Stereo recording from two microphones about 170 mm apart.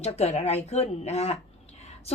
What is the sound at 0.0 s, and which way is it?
A woman's voice, 40° left (ahead or behind).